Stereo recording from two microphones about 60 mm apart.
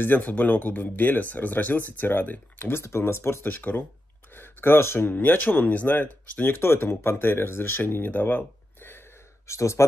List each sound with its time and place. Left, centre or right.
0.0 s speech: left
5.0 s speech: left
6.5 s speech: left
9.5 s speech: left